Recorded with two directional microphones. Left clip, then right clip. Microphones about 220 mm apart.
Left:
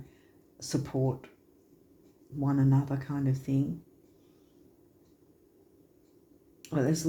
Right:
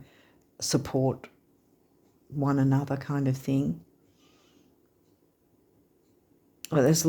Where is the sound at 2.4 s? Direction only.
50° right (ahead or behind).